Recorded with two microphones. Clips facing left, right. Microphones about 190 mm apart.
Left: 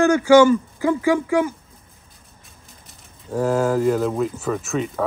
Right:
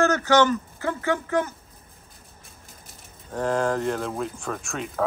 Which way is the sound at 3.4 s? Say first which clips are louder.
Left 5 dB; 5° left (ahead or behind).